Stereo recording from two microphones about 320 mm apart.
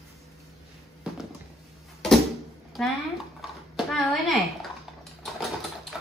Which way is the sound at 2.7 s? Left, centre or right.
Centre.